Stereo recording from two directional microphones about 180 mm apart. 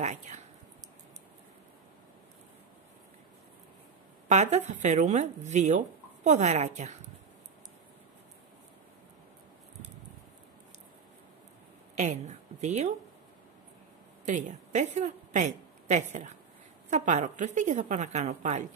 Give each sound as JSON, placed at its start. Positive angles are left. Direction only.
{"t": 0.0, "sound": "speech", "side_deg": -40}
{"t": 4.3, "sound": "speech", "side_deg": -40}
{"t": 11.9, "sound": "a woman's voice", "side_deg": -40}
{"t": 14.2, "sound": "a woman's voice", "side_deg": -40}